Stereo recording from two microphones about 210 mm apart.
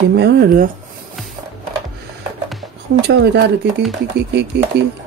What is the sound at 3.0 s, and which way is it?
Speech, 55° right (ahead or behind).